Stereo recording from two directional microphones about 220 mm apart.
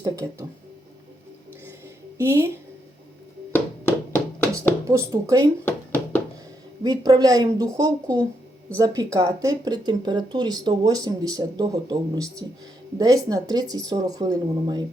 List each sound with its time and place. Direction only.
0.0 s speech: 15° right (ahead or behind)
2.1 s a woman's voice: 10° right (ahead or behind)
3.5 s music: 10° left (ahead or behind)
4.9 s speech: 15° right (ahead or behind)
5.6 s a sound: 10° left (ahead or behind)
6.8 s speech: 15° right (ahead or behind)